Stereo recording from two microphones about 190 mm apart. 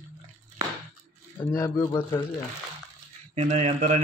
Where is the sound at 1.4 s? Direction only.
15° left (ahead or behind).